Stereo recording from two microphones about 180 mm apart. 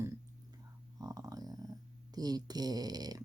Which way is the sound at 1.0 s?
20° right (ahead or behind).